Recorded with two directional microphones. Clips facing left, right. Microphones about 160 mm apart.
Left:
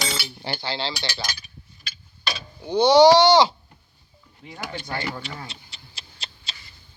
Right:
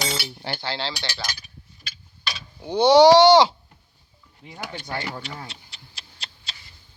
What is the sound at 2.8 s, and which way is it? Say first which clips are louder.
Speech: right 1 dB; 65° right (ahead or behind).